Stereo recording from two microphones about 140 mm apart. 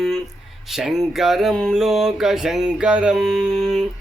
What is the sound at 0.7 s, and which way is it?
Music, centre (ahead or behind).